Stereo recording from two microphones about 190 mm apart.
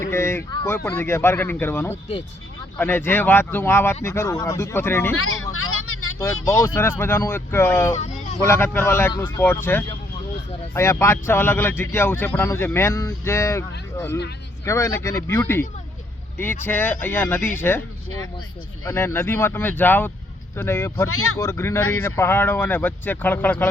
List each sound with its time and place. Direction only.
0.0 s a sound: 15° left (ahead or behind)
0.9 s a man's voice: 15° left (ahead or behind)
5.1 s vehicle: 90° left
7.0 s a man's voice: 10° left (ahead or behind)
7.9 s a sound: 35° left (ahead or behind)
8.4 s a man's voice: 15° left (ahead or behind)
18.9 s a man's voice: 15° left (ahead or behind)
21.1 s speech: 90° left
21.3 s a man's voice: 15° left (ahead or behind)